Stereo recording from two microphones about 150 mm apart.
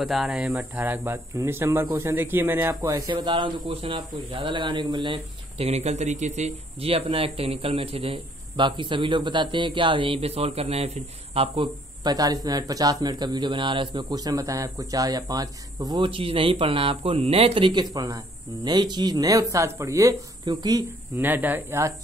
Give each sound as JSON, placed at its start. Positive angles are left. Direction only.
{"t": 0.0, "sound": "speech", "side_deg": 0}
{"t": 15.9, "sound": "speech", "side_deg": -35}
{"t": 21.2, "sound": "speech", "side_deg": -10}